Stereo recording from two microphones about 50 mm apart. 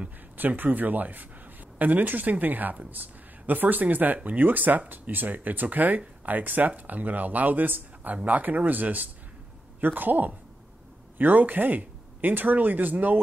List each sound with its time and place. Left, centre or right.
0.4 s speech: right